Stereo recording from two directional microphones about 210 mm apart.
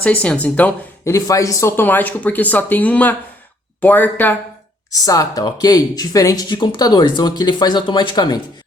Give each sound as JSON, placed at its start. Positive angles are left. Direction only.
{"t": 0.0, "sound": "speech", "side_deg": 5}